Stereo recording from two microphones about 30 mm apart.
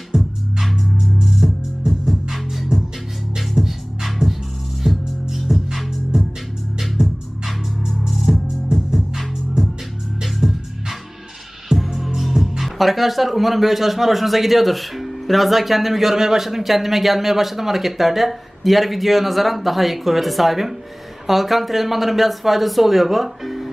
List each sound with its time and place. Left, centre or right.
0.1 s music: right
1.4 s music: centre
3.3 s music: centre
7.0 s music: right
8.1 s music: centre
10.2 s music: centre
12.6 s speech: centre